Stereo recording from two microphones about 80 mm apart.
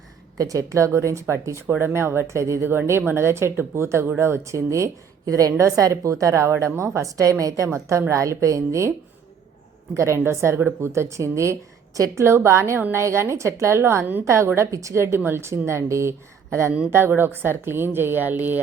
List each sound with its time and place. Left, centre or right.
0.3 s a woman's voice: right
9.9 s a woman's voice: right
12.2 s a woman's voice: right